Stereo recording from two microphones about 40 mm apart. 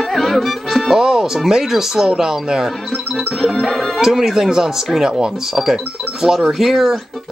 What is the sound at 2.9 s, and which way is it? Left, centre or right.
Speech, centre.